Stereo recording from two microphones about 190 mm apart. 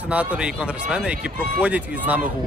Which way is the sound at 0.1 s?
5° right (ahead or behind).